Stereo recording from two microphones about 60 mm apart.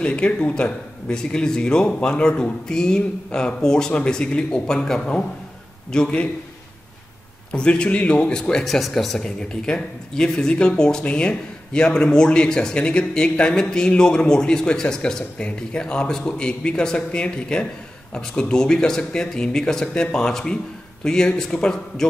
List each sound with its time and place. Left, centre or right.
0.0 s speech: centre
7.5 s speech: centre